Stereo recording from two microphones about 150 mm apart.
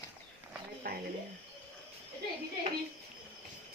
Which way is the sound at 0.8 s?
90° right.